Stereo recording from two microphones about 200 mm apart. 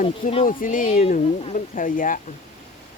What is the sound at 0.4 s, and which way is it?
Speech, 40° left (ahead or behind).